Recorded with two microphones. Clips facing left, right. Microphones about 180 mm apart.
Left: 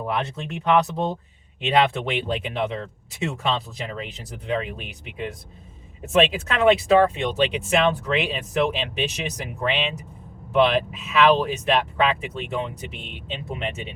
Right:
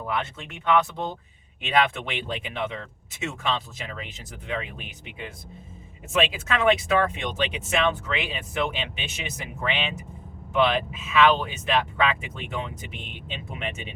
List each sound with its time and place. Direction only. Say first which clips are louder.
0.1 s speech: left 1 dB; 35° left (ahead or behind)